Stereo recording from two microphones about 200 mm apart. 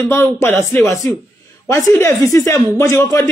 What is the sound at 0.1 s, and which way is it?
A man's voice, 10° left (ahead or behind).